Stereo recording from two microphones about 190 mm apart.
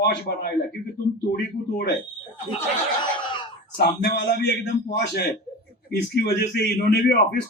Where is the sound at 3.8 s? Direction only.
60° left (ahead or behind).